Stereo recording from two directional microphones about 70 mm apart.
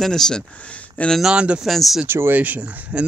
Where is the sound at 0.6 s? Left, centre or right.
Centre.